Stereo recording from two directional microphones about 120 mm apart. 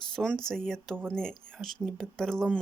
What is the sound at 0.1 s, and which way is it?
Speech, 5° left (ahead or behind).